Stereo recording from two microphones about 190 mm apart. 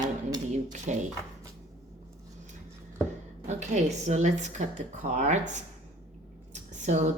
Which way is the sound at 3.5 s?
40° right (ahead or behind).